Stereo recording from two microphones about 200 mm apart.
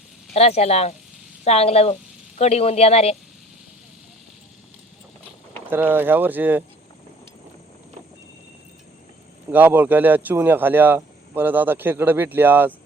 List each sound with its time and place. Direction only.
0.3 s a woman's voice: 30° left (ahead or behind)
5.7 s speech: 10° right (ahead or behind)
9.5 s speech: 10° right (ahead or behind)